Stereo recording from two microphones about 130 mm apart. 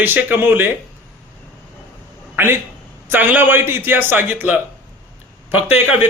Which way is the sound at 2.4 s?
15° right (ahead or behind).